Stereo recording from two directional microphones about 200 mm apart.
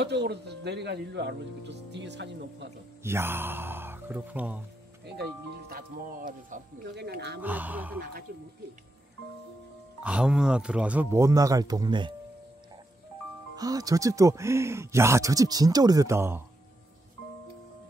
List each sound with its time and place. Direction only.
0.0 s speech: 55° right (ahead or behind)
3.0 s speech: 10° right (ahead or behind)
5.0 s speech: 55° right (ahead or behind)
7.0 s speech: 55° right (ahead or behind)
7.4 s speech: 10° right (ahead or behind)
10.0 s speech: 5° right (ahead or behind); by 12.1 s 20° right (ahead or behind)
13.6 s speech: 20° right (ahead or behind)